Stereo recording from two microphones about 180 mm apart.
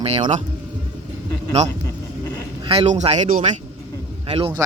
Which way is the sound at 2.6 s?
35° right (ahead or behind).